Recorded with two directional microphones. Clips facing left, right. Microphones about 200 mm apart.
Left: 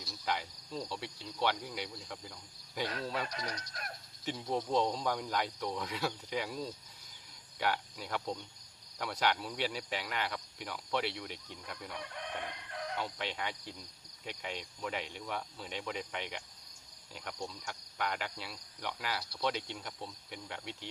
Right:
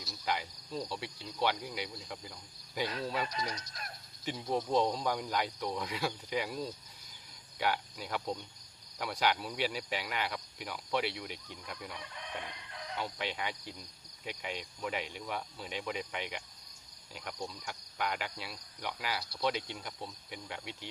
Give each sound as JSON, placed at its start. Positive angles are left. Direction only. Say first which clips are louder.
{"t": 0.0, "sound": "cricket", "louder": "right 1 dB", "side_deg": -5}
{"t": 3.3, "sound": "fowl", "louder": "right 2 dB", "side_deg": 60}
{"t": 4.3, "sound": "cricket", "louder": "right 1 dB", "side_deg": -5}
{"t": 11.9, "sound": "crowing", "louder": "left 2 dB", "side_deg": 55}
{"t": 13.0, "sound": "cricket", "louder": "right 3 dB", "side_deg": -5}